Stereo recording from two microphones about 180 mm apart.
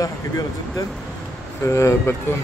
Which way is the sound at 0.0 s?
20° left (ahead or behind).